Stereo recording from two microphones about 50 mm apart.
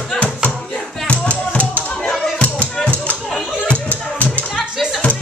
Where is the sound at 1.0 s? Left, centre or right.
Left.